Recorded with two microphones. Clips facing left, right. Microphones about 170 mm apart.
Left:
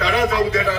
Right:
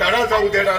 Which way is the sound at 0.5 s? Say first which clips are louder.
Right 3 dB; 30° right (ahead or behind).